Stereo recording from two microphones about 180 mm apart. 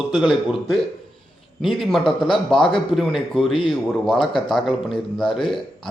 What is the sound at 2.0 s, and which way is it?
Speech, 30° left (ahead or behind).